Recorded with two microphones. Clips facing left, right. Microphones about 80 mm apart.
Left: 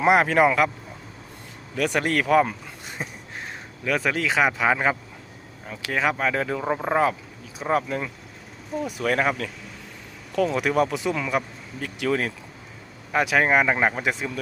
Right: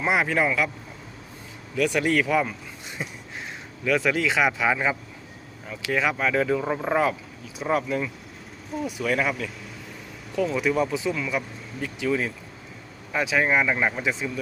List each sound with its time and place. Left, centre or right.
0.0 s speech: left
2.0 s speech: left
6.7 s speech: centre
7.7 s speech: left
9.0 s speech: left
10.3 s speech: left